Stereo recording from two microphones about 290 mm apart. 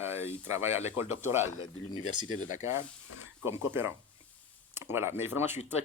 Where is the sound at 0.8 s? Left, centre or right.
Left.